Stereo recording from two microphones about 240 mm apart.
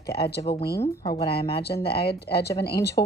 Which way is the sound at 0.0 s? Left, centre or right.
Left.